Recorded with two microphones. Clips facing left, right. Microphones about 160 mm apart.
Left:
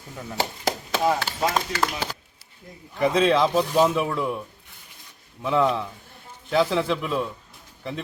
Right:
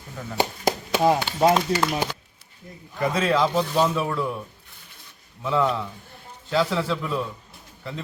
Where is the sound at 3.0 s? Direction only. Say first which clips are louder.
Left 2 dB; 20° left (ahead or behind).